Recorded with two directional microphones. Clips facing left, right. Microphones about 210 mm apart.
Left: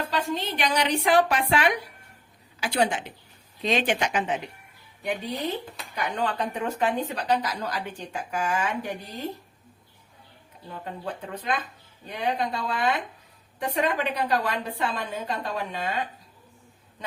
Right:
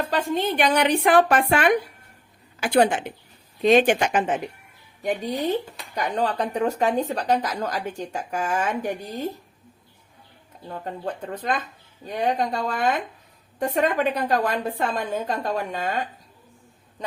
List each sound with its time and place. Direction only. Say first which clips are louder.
0.1 s speech: right 5 dB; 50° right (ahead or behind)
10.8 s speech: right 4 dB; 45° right (ahead or behind)